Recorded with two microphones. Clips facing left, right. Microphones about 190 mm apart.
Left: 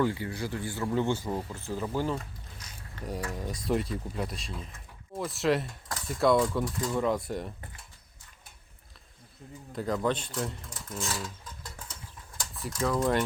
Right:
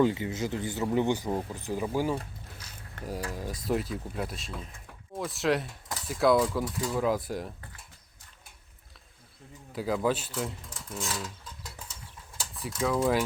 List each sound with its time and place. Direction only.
0.0 s speech: 20° right (ahead or behind)
3.3 s cutlery: centre (ahead or behind)
9.7 s cutlery: 5° right (ahead or behind)
10.9 s mechanisms: centre (ahead or behind)
12.4 s speech: 5° right (ahead or behind)